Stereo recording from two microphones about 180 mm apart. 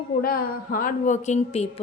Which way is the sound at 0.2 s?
55° left (ahead or behind).